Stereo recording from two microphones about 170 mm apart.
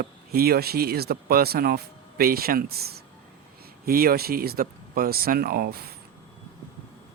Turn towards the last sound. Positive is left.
turn(degrees=-65)  # may be behind; listen again after turning